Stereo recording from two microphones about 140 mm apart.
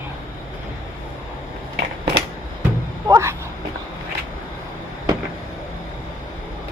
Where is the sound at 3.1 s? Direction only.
20° right (ahead or behind).